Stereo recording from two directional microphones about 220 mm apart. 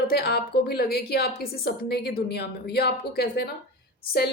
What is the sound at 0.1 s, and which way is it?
A woman's voice, 45° left (ahead or behind).